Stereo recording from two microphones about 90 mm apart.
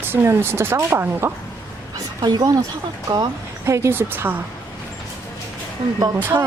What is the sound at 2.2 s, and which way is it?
Speech, 45° right (ahead or behind).